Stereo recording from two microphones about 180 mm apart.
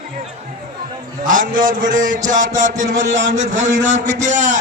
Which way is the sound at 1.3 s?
50° right (ahead or behind).